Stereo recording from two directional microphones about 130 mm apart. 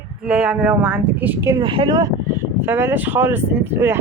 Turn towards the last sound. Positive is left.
turn(degrees=-15)  # may be behind; listen again after turning